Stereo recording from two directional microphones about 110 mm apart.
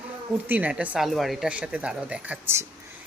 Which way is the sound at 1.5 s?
10° right (ahead or behind).